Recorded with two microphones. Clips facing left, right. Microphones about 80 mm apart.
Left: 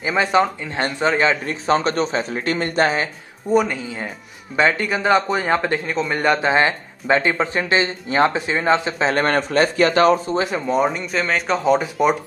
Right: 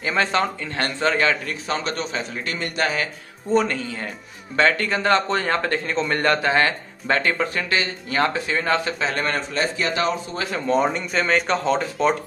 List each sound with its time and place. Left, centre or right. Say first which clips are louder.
0.0 s a man's voice: left 4 dB; centre; by 3.1 s left
3.4 s a man's voice: left 2 dB; centre
8.9 s speech: left 6 dB; left
10.3 s a man's voice: left 6 dB; left
10.7 s speech: right 1 dB; centre